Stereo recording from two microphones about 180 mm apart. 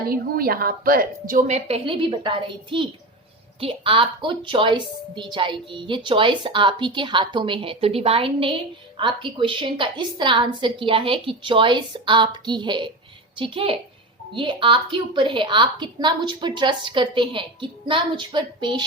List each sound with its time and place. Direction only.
0.1 s a woman's voice: 55° right (ahead or behind); by 18.8 s 25° right (ahead or behind)